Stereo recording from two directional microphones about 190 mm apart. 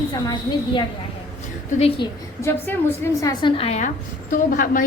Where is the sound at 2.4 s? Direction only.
10° left (ahead or behind); by 3.9 s 35° left (ahead or behind).